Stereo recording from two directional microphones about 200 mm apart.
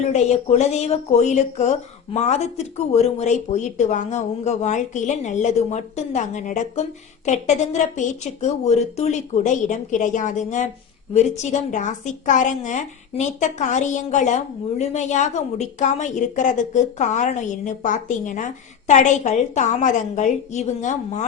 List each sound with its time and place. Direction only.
0.0 s a woman's voice: 35° left (ahead or behind)